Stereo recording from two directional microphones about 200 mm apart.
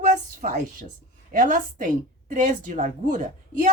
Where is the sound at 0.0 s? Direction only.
35° right (ahead or behind).